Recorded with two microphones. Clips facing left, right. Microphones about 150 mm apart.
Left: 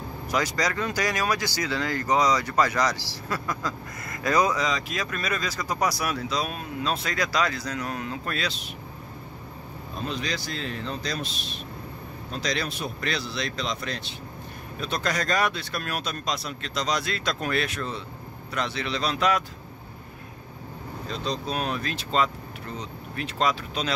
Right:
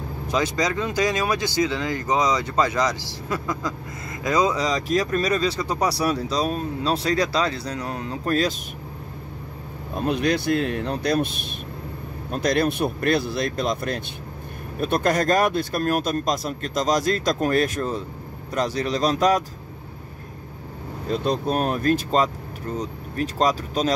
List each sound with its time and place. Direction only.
0.3 s speech: 20° right (ahead or behind)
4.6 s speech: 35° right (ahead or behind)
9.9 s speech: 60° right (ahead or behind); by 19.4 s 40° right (ahead or behind)
21.1 s speech: 55° right (ahead or behind)